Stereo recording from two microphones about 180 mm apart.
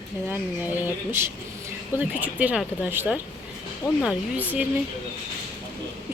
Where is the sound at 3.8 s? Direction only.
20° left (ahead or behind).